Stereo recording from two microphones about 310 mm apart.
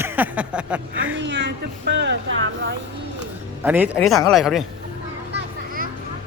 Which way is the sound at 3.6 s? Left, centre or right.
Centre.